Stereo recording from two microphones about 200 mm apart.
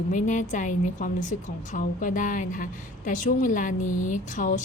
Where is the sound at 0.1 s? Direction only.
40° left (ahead or behind).